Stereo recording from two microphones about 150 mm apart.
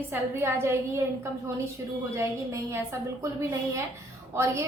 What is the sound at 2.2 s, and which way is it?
A woman's voice, 15° right (ahead or behind).